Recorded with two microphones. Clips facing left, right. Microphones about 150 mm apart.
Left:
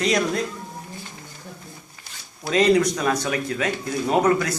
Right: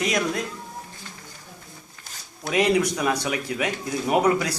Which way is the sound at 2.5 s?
10° right (ahead or behind).